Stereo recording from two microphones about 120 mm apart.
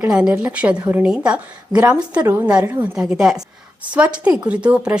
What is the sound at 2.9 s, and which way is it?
A woman's voice, 5° right (ahead or behind).